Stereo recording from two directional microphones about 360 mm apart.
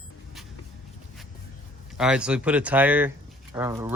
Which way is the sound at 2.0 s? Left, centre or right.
Centre.